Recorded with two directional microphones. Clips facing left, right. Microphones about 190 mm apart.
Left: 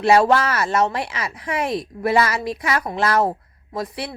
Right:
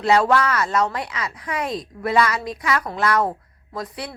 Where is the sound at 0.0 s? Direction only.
25° left (ahead or behind).